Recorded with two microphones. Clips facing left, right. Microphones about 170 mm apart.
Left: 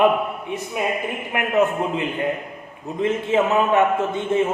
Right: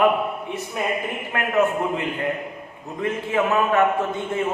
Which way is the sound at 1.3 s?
20° left (ahead or behind).